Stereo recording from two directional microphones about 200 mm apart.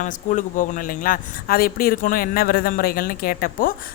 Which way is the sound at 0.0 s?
40° left (ahead or behind).